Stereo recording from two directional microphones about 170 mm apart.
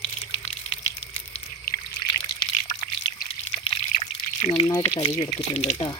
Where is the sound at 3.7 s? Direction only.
40° left (ahead or behind).